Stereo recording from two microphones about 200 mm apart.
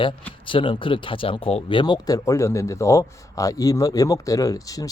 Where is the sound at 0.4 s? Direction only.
25° left (ahead or behind).